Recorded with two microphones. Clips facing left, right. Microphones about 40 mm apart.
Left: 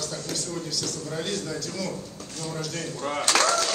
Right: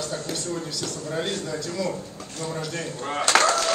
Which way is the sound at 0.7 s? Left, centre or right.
Right.